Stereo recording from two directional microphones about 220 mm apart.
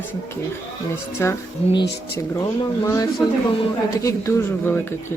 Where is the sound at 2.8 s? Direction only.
15° left (ahead or behind).